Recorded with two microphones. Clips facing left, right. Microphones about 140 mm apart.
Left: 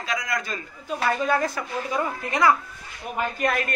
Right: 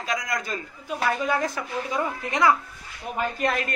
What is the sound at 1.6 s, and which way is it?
Speech, centre (ahead or behind).